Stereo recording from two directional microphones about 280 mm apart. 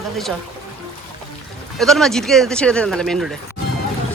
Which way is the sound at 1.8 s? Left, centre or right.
Centre.